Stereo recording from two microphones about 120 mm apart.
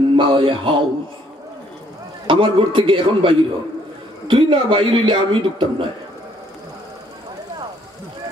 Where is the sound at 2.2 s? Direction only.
45° right (ahead or behind).